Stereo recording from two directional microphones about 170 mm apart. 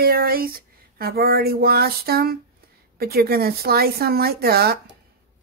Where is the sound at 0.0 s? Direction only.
60° right (ahead or behind).